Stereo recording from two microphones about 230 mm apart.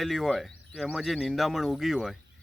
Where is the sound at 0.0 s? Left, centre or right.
Centre.